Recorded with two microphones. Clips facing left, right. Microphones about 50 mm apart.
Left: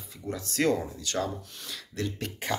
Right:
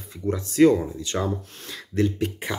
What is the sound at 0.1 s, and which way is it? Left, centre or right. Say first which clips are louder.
Speech: right 8 dB; right.